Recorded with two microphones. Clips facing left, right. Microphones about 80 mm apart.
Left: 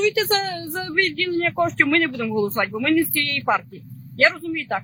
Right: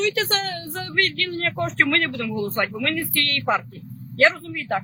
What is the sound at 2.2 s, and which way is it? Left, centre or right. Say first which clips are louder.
Speech: left 3 dB; centre.